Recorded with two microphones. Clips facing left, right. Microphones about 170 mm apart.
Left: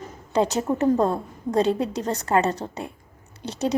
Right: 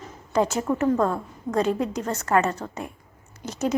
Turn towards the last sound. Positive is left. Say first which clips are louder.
# left 1 dB
turn(degrees=35)  # may be behind; listen again after turning